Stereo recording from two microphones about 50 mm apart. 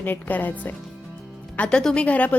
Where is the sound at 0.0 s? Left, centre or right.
Left.